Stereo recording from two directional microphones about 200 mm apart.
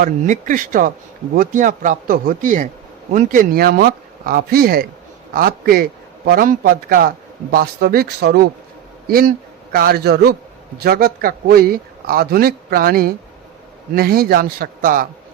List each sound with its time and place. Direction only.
0.0 s speech: 40° right (ahead or behind)